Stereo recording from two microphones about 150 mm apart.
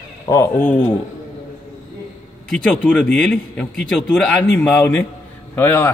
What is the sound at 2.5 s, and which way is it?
A man's voice, 5° left (ahead or behind).